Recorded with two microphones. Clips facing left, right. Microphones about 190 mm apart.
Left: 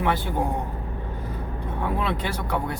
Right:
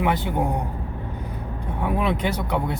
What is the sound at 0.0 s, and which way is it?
Speech, 20° right (ahead or behind).